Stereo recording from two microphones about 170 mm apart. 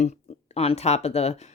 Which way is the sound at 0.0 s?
40° left (ahead or behind).